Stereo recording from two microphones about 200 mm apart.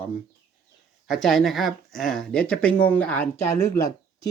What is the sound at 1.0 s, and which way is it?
Speech, centre (ahead or behind).